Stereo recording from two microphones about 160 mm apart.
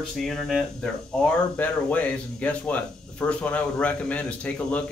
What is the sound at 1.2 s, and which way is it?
Speech, 10° left (ahead or behind).